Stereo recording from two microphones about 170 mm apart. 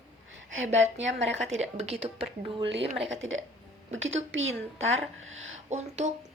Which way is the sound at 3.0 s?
90° right.